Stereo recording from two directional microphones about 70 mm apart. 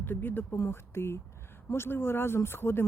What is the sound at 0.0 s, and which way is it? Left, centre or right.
Speech, left.